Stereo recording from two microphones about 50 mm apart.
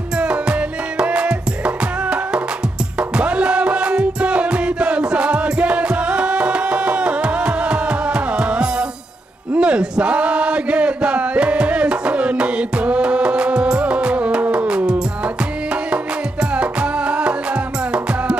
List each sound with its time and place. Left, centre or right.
0.2 s music: right
9.6 s chant: right
16.5 s music: right